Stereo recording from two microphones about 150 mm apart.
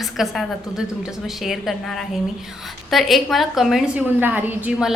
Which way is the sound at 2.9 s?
Centre (ahead or behind).